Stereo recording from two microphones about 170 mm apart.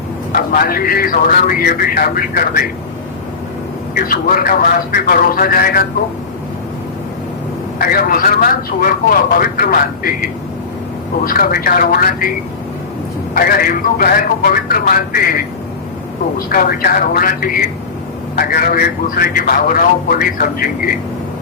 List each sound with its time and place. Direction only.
0.3 s a man's voice: 60° left (ahead or behind)
3.9 s a man's voice: 55° left (ahead or behind)
7.8 s a man's voice: 60° left (ahead or behind)
11.3 s a man's voice: 60° left (ahead or behind)
13.3 s a man's voice: 60° left (ahead or behind)
16.5 s a man's voice: 55° left (ahead or behind)